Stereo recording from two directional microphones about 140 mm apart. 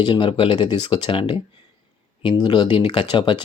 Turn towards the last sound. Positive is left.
turn(degrees=35)  # may be behind; listen again after turning